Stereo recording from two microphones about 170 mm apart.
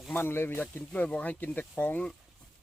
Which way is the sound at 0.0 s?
10° left (ahead or behind).